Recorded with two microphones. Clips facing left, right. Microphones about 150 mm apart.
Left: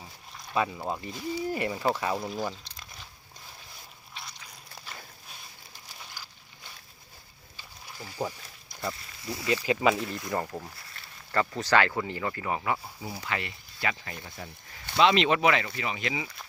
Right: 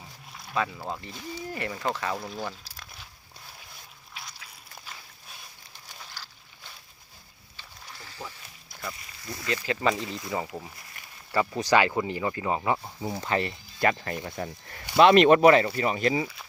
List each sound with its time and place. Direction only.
0.5 s speech: 15° left (ahead or behind)
2.3 s crunch: centre (ahead or behind)
4.1 s a sound: 5° right (ahead or behind)
7.5 s a sound: 10° left (ahead or behind)
9.2 s speech: 10° left (ahead or behind)
10.9 s speech: 10° right (ahead or behind); by 16.2 s 45° right (ahead or behind)